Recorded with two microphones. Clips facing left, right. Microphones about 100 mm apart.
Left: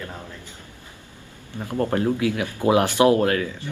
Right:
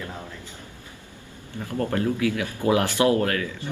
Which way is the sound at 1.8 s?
30° left (ahead or behind).